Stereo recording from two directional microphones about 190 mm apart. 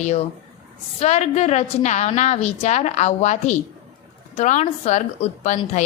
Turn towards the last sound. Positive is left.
turn(degrees=40)  # may be behind; listen again after turning